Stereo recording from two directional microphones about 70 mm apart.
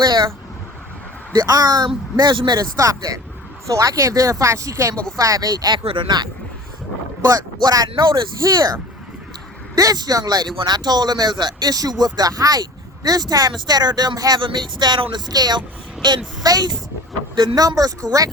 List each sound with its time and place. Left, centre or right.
0.0 s speech: right
1.3 s speech: right
2.7 s speech: right
5.1 s speech: right
7.3 s speech: right